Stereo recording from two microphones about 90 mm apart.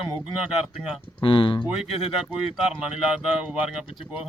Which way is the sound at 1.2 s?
70° left (ahead or behind).